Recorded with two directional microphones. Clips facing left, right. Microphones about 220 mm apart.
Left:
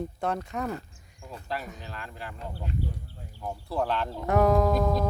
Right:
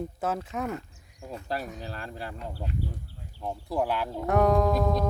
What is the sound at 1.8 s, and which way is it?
Speech, 40° right (ahead or behind).